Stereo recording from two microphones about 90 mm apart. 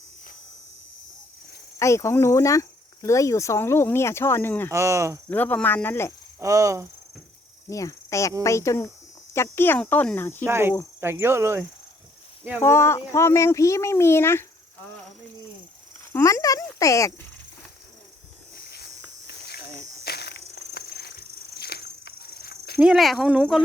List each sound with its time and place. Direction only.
1.8 s speech: 35° left (ahead or behind)
4.7 s speech: 35° right (ahead or behind)
5.3 s speech: 20° left (ahead or behind)
6.4 s speech: 40° right (ahead or behind)
7.7 s speech: 35° left (ahead or behind)
10.4 s speech: 25° right (ahead or behind)
12.6 s speech: 30° left (ahead or behind)
16.2 s speech: 40° left (ahead or behind)
22.8 s speech: 5° right (ahead or behind)